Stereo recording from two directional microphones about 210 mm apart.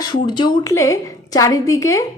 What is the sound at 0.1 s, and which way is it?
A woman's voice, 20° left (ahead or behind).